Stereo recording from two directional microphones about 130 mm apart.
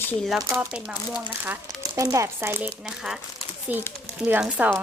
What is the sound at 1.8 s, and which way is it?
Speech, 25° right (ahead or behind).